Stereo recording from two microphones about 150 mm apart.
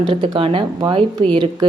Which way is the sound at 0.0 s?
35° right (ahead or behind).